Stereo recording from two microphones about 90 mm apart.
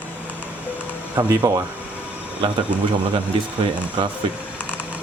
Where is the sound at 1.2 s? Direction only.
35° right (ahead or behind).